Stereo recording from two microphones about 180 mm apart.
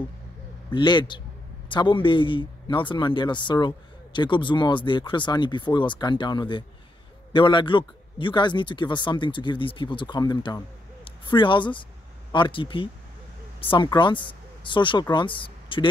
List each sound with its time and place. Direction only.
0.7 s a man's voice: 25° left (ahead or behind)